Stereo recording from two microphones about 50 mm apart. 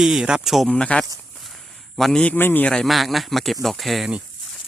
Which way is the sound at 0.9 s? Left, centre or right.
Left.